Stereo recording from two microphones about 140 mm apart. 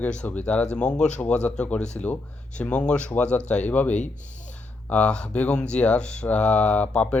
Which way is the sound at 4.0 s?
60° left (ahead or behind).